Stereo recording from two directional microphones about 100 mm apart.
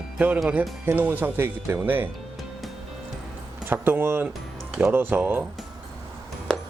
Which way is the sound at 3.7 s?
20° right (ahead or behind).